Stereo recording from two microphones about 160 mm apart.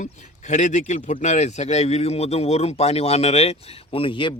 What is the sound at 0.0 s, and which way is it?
Speech, 50° left (ahead or behind).